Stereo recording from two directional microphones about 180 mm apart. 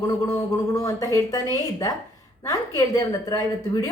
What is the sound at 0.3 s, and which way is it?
A woman's voice, 20° left (ahead or behind).